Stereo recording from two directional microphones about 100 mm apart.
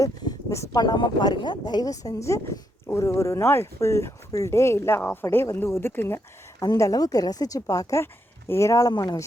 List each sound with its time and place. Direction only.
0.0 s a sound: 30° left (ahead or behind)
0.8 s speech: 40° left (ahead or behind); by 6.1 s 25° left (ahead or behind)
6.6 s speech: 35° left (ahead or behind)
8.9 s speech: 45° left (ahead or behind)